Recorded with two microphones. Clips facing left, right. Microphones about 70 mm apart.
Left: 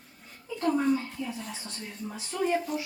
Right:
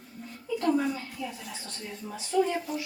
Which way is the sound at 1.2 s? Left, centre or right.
Left.